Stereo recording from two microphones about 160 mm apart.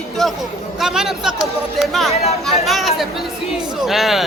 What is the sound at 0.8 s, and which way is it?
Speech, centre (ahead or behind).